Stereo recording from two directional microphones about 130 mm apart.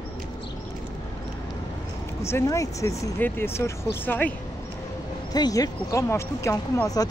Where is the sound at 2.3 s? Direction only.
20° left (ahead or behind).